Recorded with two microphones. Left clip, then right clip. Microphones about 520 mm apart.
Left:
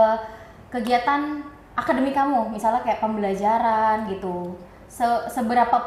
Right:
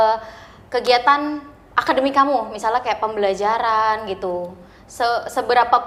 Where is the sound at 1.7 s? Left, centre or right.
Right.